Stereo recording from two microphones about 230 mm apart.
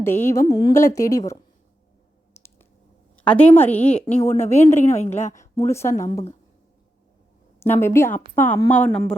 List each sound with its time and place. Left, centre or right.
0.0 s a woman's voice: centre
3.2 s a woman's voice: centre
4.3 s speech: left
4.9 s a woman's voice: centre
7.6 s a woman's voice: centre